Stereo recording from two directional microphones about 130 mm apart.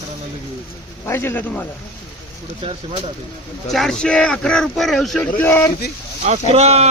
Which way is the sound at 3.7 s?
5° left (ahead or behind).